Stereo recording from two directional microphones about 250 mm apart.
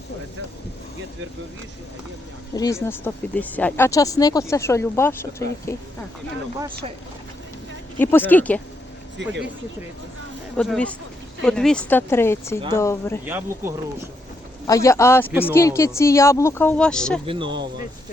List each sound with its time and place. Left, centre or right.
2.6 s speech: centre
7.9 s speech: centre
9.1 s speech: right
10.6 s speech: centre
13.2 s speech: centre
14.7 s speech: centre
17.2 s speech: centre